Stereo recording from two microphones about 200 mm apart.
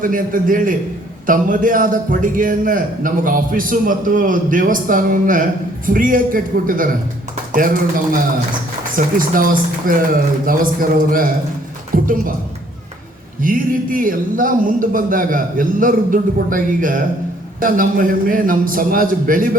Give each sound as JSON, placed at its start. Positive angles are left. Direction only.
{"t": 0.0, "sound": "a man's voice", "side_deg": -45}
{"t": 13.4, "sound": "a man's voice", "side_deg": -45}